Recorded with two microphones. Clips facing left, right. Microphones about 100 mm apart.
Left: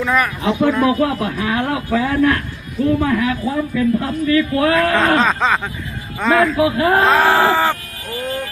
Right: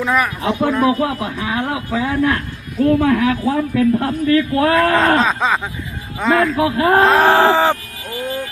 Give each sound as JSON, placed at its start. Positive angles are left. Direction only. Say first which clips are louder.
{"t": 0.0, "sound": "a man's voice", "louder": "even", "side_deg": -10}
{"t": 0.6, "sound": "a man's voice", "louder": "left 1 dB", "side_deg": -20}
{"t": 2.8, "sound": "a man's voice", "louder": "right 3 dB", "side_deg": -70}
{"t": 4.3, "sound": "speech", "louder": "right 1 dB", "side_deg": -40}
{"t": 5.2, "sound": "speech", "louder": "left 1 dB", "side_deg": 0}
{"t": 6.6, "sound": "speech", "louder": "right 1 dB", "side_deg": -40}
{"t": 7.2, "sound": "speech", "louder": "right 2 dB", "side_deg": -20}